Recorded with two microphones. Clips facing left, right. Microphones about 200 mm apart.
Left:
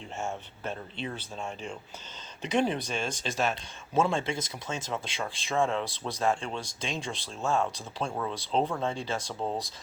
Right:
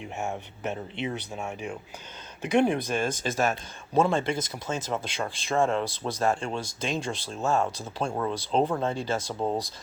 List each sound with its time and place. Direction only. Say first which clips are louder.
0.2 s speech: right 2 dB; 20° right (ahead or behind)
2.7 s speech: right 5 dB; 50° right (ahead or behind)
3.5 s speech: right 3 dB; centre (ahead or behind)